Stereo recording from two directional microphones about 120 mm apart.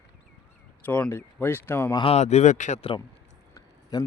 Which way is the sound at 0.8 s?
15° left (ahead or behind).